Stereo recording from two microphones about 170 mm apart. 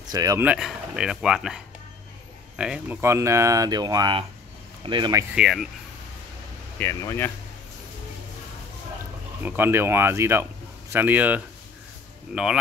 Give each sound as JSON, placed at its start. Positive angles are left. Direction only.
{"t": 0.0, "sound": "speech", "side_deg": -20}
{"t": 0.5, "sound": "speech", "side_deg": -5}
{"t": 5.3, "sound": "speech", "side_deg": -5}
{"t": 6.8, "sound": "speech", "side_deg": 15}
{"t": 9.4, "sound": "speech", "side_deg": -10}